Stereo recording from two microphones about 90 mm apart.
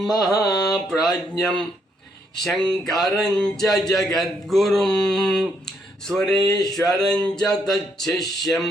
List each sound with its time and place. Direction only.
0.1 s mantra: 40° left (ahead or behind)
1.0 s speech: 5° left (ahead or behind)